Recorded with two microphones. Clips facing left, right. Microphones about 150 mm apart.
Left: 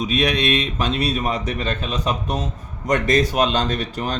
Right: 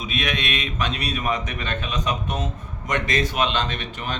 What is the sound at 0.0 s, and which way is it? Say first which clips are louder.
Speech: left 7 dB; 35° left (ahead or behind).